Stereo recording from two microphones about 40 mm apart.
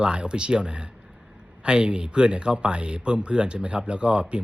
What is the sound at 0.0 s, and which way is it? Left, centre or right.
Speech, right.